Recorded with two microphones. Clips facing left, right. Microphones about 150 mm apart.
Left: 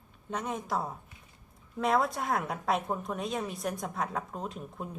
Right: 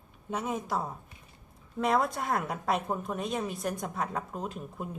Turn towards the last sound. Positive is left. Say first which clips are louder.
# right 1 dB
turn(degrees=0)  # may be behind; listen again after turning